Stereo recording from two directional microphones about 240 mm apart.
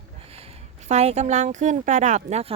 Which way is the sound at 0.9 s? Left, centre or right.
Right.